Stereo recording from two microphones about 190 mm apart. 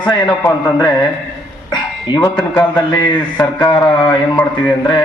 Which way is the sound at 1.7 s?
20° left (ahead or behind).